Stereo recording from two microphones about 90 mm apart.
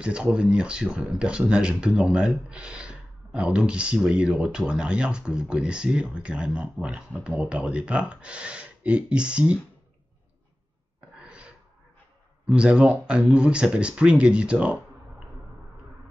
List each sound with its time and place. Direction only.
0.0 s speech: 10° right (ahead or behind)
11.1 s gasp: 15° right (ahead or behind)
12.4 s speech: 10° right (ahead or behind)